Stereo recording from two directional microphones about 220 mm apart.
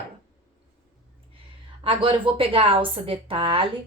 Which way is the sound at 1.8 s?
25° right (ahead or behind).